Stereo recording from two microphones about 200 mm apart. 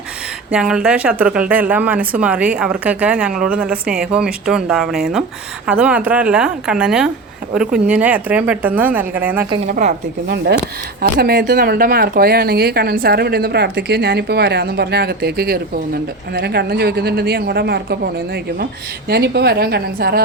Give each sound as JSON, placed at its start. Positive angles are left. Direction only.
{"t": 0.5, "sound": "a woman's voice", "side_deg": -5}
{"t": 9.6, "sound": "speech", "side_deg": -40}